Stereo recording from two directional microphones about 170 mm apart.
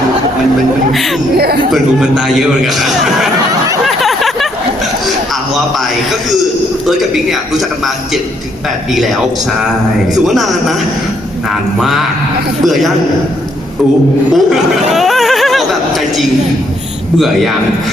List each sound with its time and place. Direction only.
1.4 s speech: 65° right (ahead or behind)
1.7 s a man's voice: 5° right (ahead or behind)
3.8 s a sound: centre (ahead or behind)
6.8 s a man's voice: centre (ahead or behind)
8.9 s a man's voice: centre (ahead or behind)
10.2 s a man's voice: centre (ahead or behind)
11.8 s a man's voice: centre (ahead or behind)
14.3 s laughter: centre (ahead or behind)
17.2 s a man's voice: centre (ahead or behind)